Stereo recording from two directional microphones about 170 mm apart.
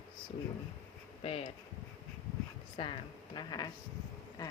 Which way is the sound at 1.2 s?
35° left (ahead or behind).